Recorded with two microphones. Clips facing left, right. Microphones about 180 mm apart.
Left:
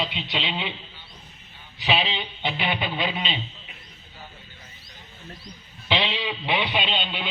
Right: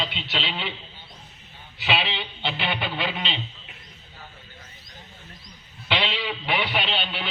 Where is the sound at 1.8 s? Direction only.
15° left (ahead or behind).